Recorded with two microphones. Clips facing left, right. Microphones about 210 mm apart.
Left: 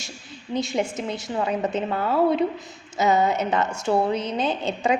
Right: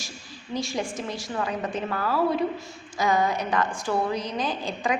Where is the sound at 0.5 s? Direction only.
20° left (ahead or behind).